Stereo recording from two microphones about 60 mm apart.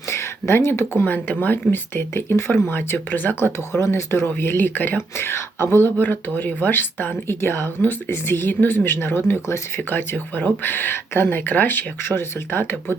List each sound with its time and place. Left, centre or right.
0.1 s speech: left
3.8 s speech: left